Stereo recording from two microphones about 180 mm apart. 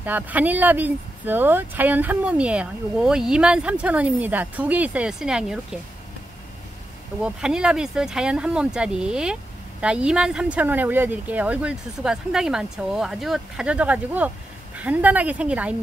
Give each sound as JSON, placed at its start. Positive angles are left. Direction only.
{"t": 0.0, "sound": "speech", "side_deg": -10}
{"t": 7.2, "sound": "speech", "side_deg": -5}